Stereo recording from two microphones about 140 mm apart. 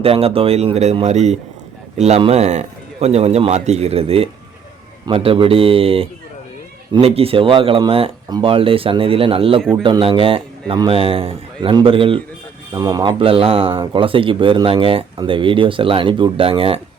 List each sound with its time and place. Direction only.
0.0 s a man's voice: 45° right (ahead or behind)
12.7 s speech: 25° right (ahead or behind)